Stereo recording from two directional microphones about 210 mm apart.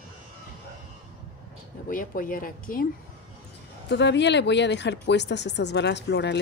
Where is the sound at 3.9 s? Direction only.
55° left (ahead or behind).